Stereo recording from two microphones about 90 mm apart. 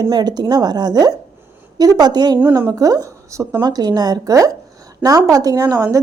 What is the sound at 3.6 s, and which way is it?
A woman's voice, 50° right (ahead or behind).